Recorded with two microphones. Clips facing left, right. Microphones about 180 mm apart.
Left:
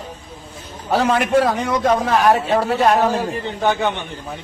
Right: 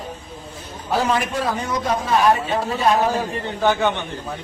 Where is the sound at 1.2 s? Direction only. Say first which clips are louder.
Left 7 dB; 65° left (ahead or behind).